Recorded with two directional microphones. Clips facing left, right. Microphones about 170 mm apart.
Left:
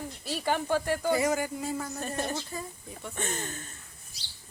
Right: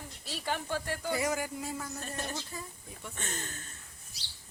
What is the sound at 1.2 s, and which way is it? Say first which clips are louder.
Speech: left 5 dB; 10° right (ahead or behind).